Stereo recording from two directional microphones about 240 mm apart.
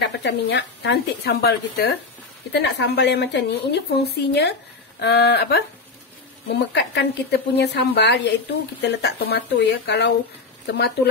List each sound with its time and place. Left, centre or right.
0.0 s speech: left
6.7 s speech: left